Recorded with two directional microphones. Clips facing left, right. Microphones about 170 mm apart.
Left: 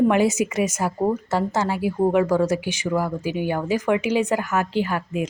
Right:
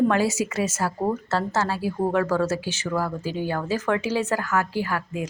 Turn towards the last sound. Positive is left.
turn(degrees=20)  # may be behind; listen again after turning